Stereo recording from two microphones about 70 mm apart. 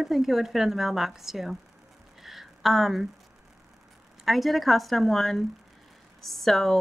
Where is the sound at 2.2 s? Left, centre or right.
Centre.